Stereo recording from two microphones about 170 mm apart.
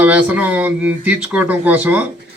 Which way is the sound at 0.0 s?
10° right (ahead or behind).